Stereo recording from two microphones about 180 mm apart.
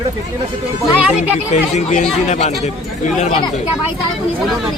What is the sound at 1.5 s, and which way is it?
Speech, 40° left (ahead or behind).